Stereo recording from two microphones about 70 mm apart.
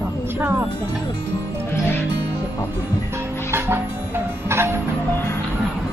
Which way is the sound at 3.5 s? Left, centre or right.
Right.